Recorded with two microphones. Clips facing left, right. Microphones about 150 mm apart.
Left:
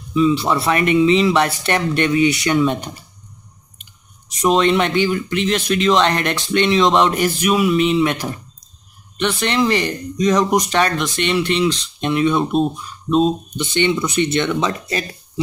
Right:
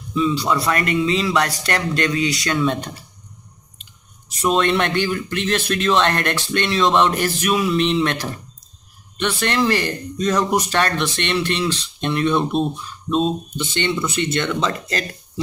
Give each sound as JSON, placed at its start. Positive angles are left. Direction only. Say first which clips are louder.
{"t": 0.3, "sound": "speech", "louder": "left 3 dB", "side_deg": 25}
{"t": 4.4, "sound": "speech", "louder": "left 3 dB", "side_deg": 5}